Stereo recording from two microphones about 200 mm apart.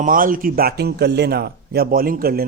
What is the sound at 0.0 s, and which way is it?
A man's voice, 45° right (ahead or behind).